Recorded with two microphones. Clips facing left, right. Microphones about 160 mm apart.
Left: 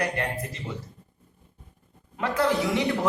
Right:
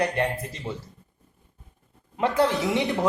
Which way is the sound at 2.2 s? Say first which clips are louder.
Right 2 dB; 20° right (ahead or behind).